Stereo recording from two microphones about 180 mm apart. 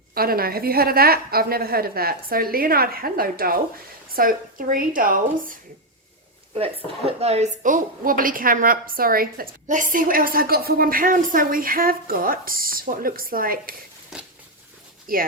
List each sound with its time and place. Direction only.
0.1 s a woman's voice: 55° right (ahead or behind)
7.2 s a woman's voice: 35° right (ahead or behind); by 13.7 s 55° right (ahead or behind)
14.1 s biting: centre (ahead or behind)
15.0 s speech: 55° right (ahead or behind)